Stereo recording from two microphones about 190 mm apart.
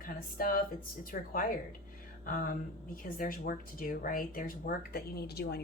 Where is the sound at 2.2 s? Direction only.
45° left (ahead or behind).